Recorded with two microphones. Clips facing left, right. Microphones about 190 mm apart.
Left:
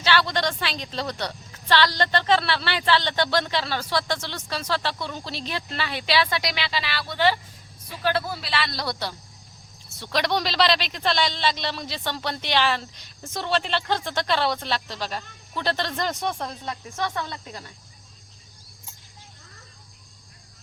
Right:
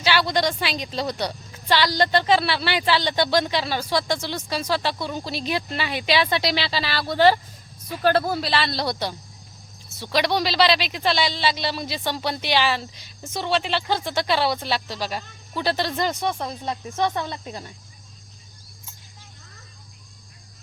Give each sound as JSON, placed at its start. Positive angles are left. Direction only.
{"t": 0.0, "sound": "a woman's voice", "side_deg": -10}
{"t": 9.9, "sound": "a woman's voice", "side_deg": -5}
{"t": 16.6, "sound": "speech", "side_deg": -20}